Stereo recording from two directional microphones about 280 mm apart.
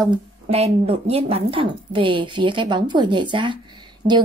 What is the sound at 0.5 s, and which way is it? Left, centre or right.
A woman's voice, right.